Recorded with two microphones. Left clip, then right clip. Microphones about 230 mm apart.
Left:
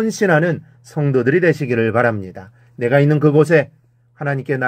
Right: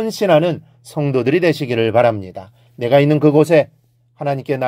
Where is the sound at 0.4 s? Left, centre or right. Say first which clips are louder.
Right 1 dB; right.